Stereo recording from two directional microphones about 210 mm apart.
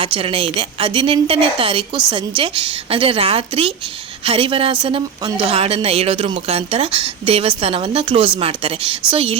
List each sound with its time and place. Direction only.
0.0 s speech: 25° right (ahead or behind)